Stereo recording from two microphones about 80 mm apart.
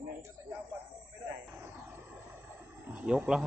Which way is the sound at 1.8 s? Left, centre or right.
Right.